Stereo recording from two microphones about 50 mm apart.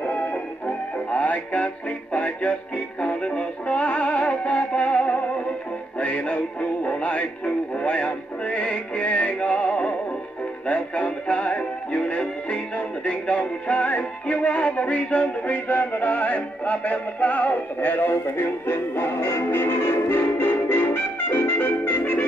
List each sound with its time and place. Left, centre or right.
0.0 s music: left
5.9 s synthetic singing: left
10.7 s music: left